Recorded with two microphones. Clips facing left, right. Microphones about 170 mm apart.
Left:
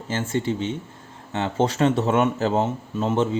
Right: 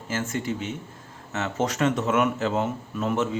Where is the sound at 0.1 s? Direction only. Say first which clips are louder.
Left 4 dB; 30° left (ahead or behind).